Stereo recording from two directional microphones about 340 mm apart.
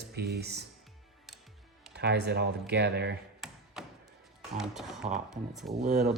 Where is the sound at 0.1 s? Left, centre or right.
Right.